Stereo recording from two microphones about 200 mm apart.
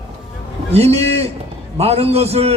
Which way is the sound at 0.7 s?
30° right (ahead or behind).